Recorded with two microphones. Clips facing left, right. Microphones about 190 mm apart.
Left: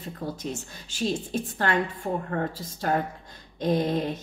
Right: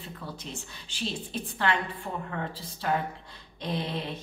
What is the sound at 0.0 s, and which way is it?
A woman's voice, 40° left (ahead or behind).